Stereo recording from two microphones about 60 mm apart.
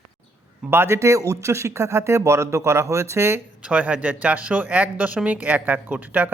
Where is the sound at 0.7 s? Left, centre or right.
Right.